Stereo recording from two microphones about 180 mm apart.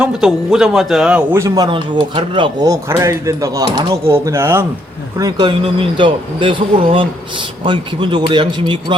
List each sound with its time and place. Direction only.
0.0 s a man's voice: centre (ahead or behind); by 9.0 s 25° right (ahead or behind)